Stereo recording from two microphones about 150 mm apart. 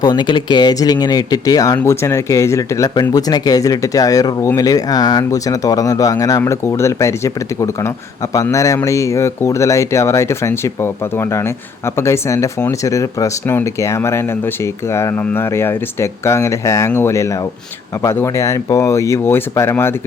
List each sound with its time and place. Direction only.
0.0 s speech: 30° left (ahead or behind)